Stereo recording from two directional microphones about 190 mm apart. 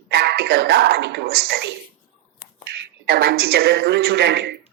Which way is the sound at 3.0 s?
55° right (ahead or behind).